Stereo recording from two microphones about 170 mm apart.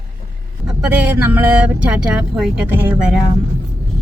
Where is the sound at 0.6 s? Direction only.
10° right (ahead or behind).